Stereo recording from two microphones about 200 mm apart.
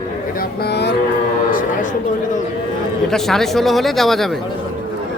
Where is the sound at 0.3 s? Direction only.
55° left (ahead or behind).